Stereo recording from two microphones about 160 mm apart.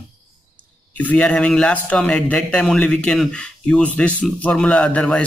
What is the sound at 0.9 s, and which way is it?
A man's voice, 10° left (ahead or behind).